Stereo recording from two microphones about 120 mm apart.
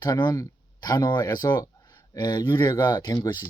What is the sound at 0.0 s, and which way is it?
Speech, 35° left (ahead or behind).